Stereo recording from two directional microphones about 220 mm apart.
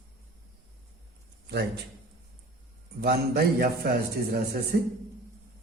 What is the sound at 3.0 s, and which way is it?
A man's voice, 45° right (ahead or behind).